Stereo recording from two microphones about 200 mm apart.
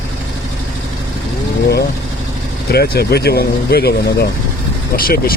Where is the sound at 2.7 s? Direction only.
50° left (ahead or behind).